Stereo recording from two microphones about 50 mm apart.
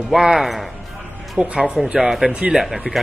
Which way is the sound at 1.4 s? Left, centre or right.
Centre.